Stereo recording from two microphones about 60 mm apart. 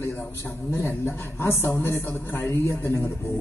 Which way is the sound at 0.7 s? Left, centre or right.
Left.